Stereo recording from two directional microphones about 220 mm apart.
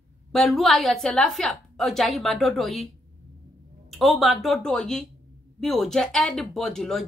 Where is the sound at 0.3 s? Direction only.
Centre (ahead or behind).